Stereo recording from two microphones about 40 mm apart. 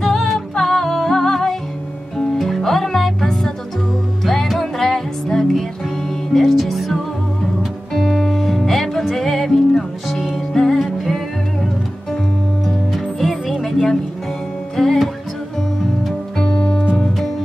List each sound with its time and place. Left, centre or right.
0.0 s music: centre
6.5 s music: centre
7.9 s music: centre
12.6 s music: centre
16.3 s music: left
16.9 s music: centre